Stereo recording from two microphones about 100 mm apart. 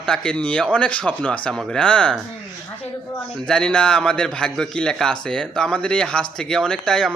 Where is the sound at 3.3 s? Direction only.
5° left (ahead or behind).